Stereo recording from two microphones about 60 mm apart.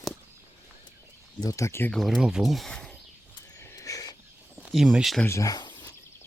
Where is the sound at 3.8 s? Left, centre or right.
Left.